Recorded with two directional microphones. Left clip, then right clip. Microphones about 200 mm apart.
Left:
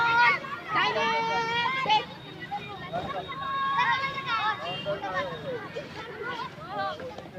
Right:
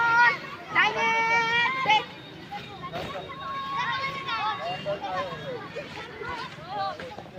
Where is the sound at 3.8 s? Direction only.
50° left (ahead or behind).